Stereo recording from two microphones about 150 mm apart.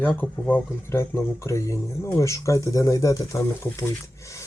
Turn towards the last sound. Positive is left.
turn(degrees=20)  # may be behind; listen again after turning